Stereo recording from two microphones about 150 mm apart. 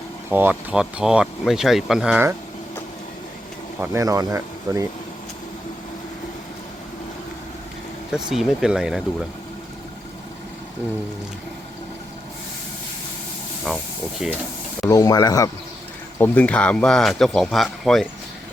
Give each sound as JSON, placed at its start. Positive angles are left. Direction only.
{"t": 0.3, "sound": "speech", "side_deg": -15}
{"t": 3.8, "sound": "speech", "side_deg": -20}
{"t": 8.1, "sound": "speech", "side_deg": -5}
{"t": 13.7, "sound": "speech", "side_deg": 0}
{"t": 14.8, "sound": "speech", "side_deg": 25}
{"t": 16.1, "sound": "speech", "side_deg": 10}